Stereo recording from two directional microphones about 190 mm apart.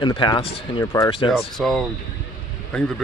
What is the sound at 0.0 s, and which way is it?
Speech, 25° left (ahead or behind).